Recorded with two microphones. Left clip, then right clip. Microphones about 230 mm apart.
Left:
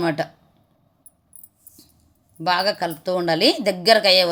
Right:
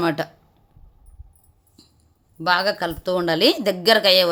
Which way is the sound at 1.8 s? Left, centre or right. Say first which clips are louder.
Even; centre.